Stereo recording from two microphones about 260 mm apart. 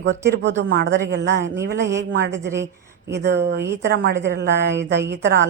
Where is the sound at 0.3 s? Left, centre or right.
Right.